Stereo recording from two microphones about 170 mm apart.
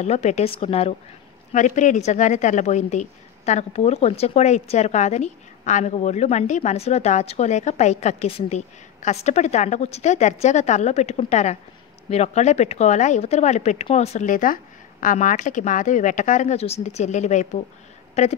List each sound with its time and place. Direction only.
0.0 s a woman's voice: 40° left (ahead or behind)
1.5 s a woman's voice: 45° left (ahead or behind)